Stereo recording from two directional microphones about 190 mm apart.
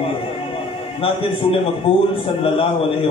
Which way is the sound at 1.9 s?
30° left (ahead or behind).